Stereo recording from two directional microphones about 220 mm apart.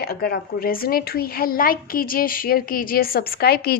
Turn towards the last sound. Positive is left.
turn(degrees=45)  # may be behind; listen again after turning